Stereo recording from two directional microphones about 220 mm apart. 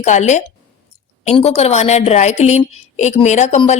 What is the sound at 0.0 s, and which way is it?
Speech, 30° left (ahead or behind).